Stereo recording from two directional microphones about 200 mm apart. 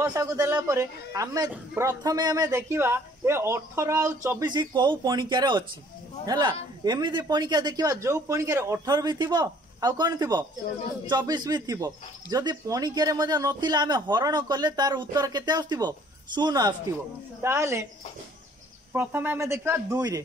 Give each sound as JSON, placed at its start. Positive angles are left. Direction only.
{"t": 0.0, "sound": "a man's voice", "side_deg": -15}
{"t": 18.9, "sound": "a man's voice", "side_deg": -10}